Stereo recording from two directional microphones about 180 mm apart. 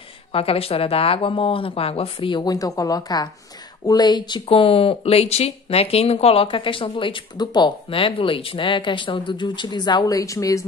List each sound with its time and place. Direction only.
0.3 s speech: 30° left (ahead or behind)